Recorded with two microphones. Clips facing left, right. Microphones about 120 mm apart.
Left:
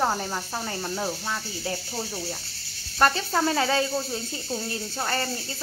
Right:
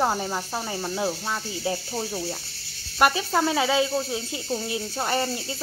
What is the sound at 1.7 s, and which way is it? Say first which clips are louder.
Snake: right 4 dB; 20° right (ahead or behind).